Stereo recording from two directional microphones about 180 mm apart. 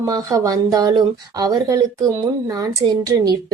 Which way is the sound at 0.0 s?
20° right (ahead or behind).